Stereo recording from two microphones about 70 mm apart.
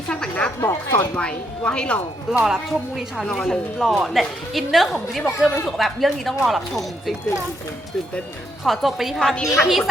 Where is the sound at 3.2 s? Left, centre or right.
Centre.